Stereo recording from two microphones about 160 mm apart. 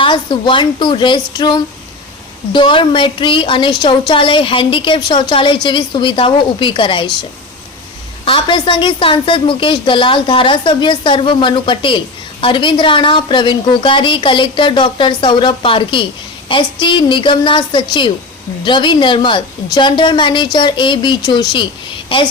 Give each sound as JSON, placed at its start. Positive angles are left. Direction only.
{"t": 0.0, "sound": "a woman's voice", "side_deg": 30}
{"t": 8.2, "sound": "a woman's voice", "side_deg": 30}